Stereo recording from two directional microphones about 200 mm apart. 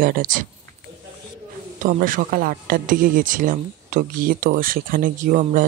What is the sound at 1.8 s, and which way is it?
Speech, 45° right (ahead or behind).